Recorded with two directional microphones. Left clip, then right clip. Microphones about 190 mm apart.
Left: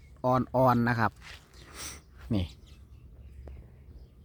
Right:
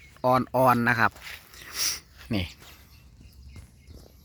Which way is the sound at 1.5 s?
Centre (ahead or behind).